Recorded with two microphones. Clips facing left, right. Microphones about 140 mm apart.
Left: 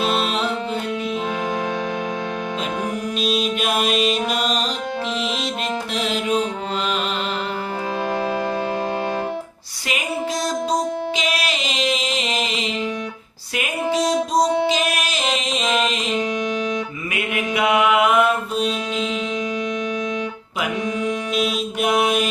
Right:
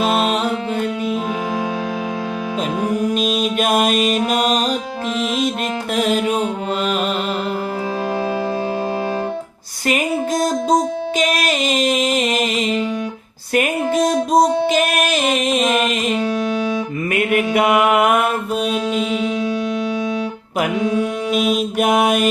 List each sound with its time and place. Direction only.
0.0 s music: 45° right (ahead or behind)
3.2 s music: 45° right (ahead or behind)
6.0 s music: 50° right (ahead or behind)
11.2 s music: 45° right (ahead or behind)
17.1 s music: 50° right (ahead or behind)
18.9 s music: 5° right (ahead or behind)
21.5 s mantra: 50° right (ahead or behind)